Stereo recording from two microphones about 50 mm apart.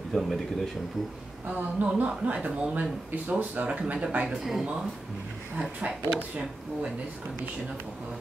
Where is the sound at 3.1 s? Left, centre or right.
Right.